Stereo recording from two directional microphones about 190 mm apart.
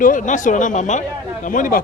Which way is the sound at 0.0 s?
45° left (ahead or behind).